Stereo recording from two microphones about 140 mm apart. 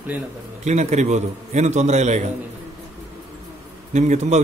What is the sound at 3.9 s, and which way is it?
Speech, 55° right (ahead or behind).